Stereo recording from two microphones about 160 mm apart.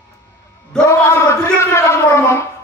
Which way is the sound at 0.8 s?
15° left (ahead or behind).